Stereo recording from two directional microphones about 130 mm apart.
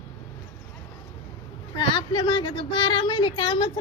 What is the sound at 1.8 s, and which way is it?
A woman's voice, 40° left (ahead or behind).